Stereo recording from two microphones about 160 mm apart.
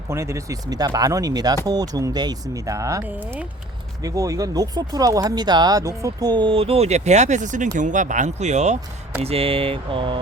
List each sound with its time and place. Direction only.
0.1 s speech: 20° right (ahead or behind)